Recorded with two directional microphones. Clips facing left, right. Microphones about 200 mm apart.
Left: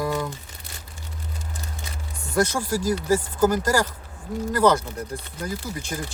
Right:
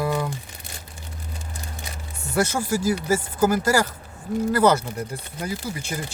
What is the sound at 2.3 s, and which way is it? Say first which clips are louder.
Speech: even; 5° right (ahead or behind).